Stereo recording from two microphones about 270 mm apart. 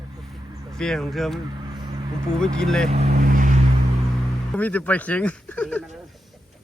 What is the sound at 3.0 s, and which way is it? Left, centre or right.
Speech, right.